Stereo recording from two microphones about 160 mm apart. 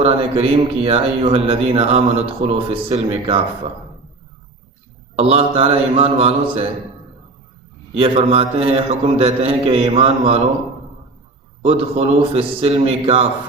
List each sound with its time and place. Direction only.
0.0 s a man's voice: 35° right (ahead or behind)
5.1 s a man's voice: 35° right (ahead or behind)
7.9 s a man's voice: 35° right (ahead or behind)
11.6 s a man's voice: 40° right (ahead or behind)